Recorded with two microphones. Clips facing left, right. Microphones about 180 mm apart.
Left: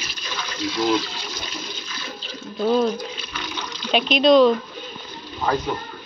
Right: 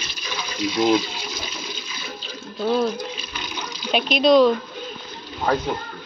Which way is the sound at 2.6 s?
5° right (ahead or behind).